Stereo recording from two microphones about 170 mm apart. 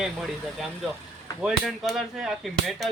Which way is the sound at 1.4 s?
Centre (ahead or behind).